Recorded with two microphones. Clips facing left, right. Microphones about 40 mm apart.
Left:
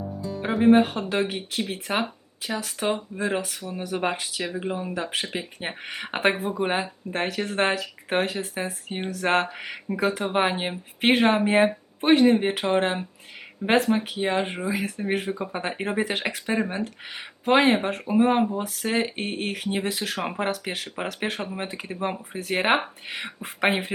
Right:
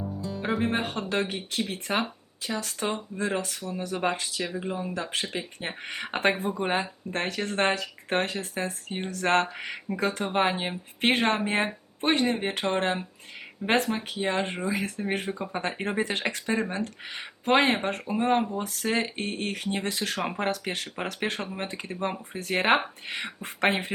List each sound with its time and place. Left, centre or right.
0.4 s speech: centre